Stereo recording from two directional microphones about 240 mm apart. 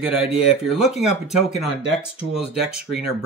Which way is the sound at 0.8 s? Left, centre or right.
Left.